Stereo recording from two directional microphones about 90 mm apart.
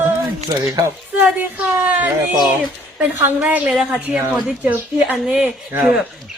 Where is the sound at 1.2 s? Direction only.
15° right (ahead or behind).